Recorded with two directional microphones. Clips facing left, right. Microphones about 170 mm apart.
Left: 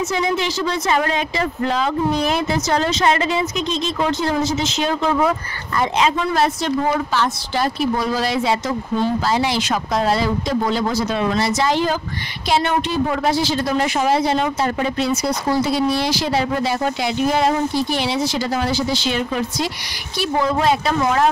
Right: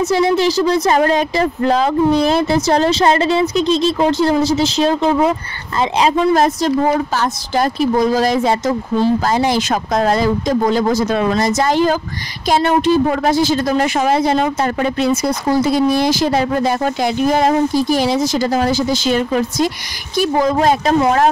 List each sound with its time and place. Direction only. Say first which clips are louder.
0.0 s speech: right 7 dB; 35° right (ahead or behind)